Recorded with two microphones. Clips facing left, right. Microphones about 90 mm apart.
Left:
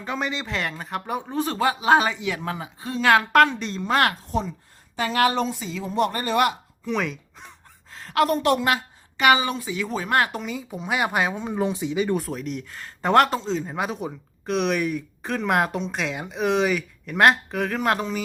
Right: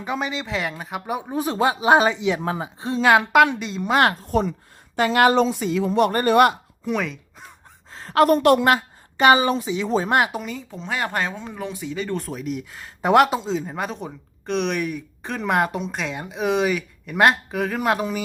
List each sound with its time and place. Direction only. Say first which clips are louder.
0.0 s speech: right 2 dB; 5° right (ahead or behind)
1.5 s speech: right 2 dB; 25° right (ahead or behind)
3.2 s a woman's voice: right 1 dB; 10° right (ahead or behind)
3.8 s speech: right 3 dB; 20° right (ahead or behind)
4.3 s a woman's voice: right 5 dB; 60° right (ahead or behind)
4.9 s speech: right 5 dB; 75° right (ahead or behind)
6.1 s speech: right 8 dB; 50° right (ahead or behind)
6.8 s speech: right 1 dB; centre (ahead or behind)
7.9 s a sound: right 4 dB; 35° right (ahead or behind)
8.3 s speech: right 5 dB; 55° right (ahead or behind); by 10.2 s 25° right (ahead or behind)
10.3 s speech: right 1 dB; centre (ahead or behind)
10.7 s speech: left 3 dB; 15° left (ahead or behind)
12.2 s speech: right 1 dB; centre (ahead or behind)